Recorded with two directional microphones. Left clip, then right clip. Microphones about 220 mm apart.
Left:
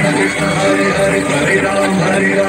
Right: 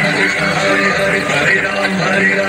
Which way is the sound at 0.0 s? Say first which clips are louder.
Right 1 dB; 50° left (ahead or behind).